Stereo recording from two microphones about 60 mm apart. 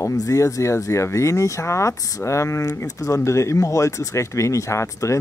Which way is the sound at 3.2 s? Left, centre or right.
Left.